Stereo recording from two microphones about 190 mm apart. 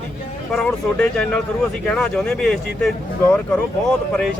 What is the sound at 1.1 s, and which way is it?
Speech, 5° left (ahead or behind).